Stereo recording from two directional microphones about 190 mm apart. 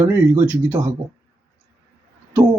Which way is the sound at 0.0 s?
10° right (ahead or behind).